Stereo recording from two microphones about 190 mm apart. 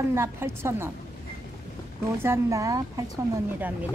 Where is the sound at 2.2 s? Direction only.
15° right (ahead or behind).